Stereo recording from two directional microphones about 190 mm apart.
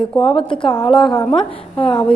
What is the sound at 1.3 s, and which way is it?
Speech, 30° left (ahead or behind).